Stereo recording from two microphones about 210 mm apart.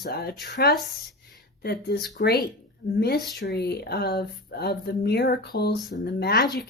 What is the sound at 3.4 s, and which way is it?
Speech, 50° left (ahead or behind).